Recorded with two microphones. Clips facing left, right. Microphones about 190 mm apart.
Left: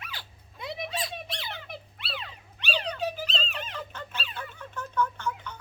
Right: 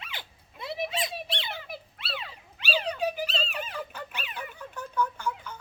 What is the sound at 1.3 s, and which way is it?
Squeak, 30° right (ahead or behind).